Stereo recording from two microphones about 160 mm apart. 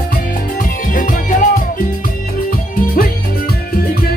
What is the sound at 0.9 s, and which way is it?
Music, 55° left (ahead or behind).